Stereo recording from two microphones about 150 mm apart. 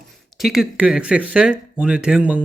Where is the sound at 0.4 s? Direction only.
5° right (ahead or behind).